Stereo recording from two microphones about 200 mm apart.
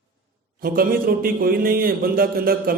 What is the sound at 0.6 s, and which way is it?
Speech, 45° right (ahead or behind).